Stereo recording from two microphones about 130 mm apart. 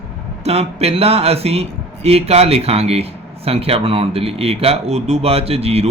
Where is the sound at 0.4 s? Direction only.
50° right (ahead or behind).